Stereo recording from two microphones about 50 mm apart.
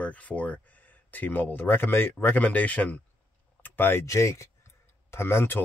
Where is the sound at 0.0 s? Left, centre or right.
Left.